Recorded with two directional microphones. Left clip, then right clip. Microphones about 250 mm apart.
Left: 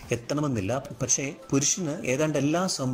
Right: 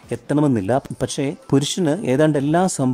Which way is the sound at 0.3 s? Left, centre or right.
Right.